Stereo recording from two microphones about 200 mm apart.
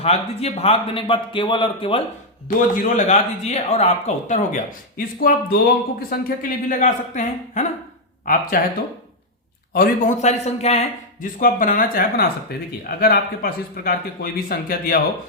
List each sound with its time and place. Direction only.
0.0 s a man's voice: 30° left (ahead or behind)
2.6 s speech: 40° left (ahead or behind)
9.7 s speech: 40° left (ahead or behind)
11.3 s speech: 40° left (ahead or behind)